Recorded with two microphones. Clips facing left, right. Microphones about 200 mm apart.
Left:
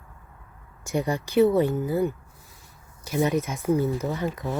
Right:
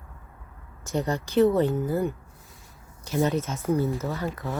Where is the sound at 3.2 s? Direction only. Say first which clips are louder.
Left 4 dB; 15° left (ahead or behind).